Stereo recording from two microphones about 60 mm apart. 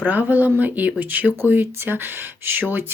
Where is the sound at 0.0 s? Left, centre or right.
Right.